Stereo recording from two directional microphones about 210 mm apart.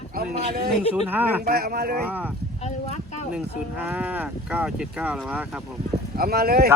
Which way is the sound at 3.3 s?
5° right (ahead or behind).